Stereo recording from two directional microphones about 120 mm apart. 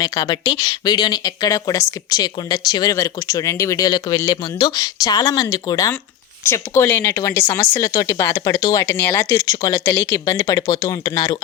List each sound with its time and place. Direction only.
0.0 s speech: 30° left (ahead or behind)
8.9 s speech: 20° left (ahead or behind)